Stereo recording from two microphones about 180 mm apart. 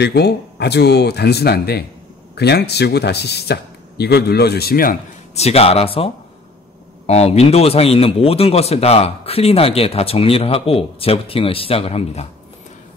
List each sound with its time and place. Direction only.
0.0 s speech: 65° left (ahead or behind)
5.3 s a man's voice: 35° left (ahead or behind)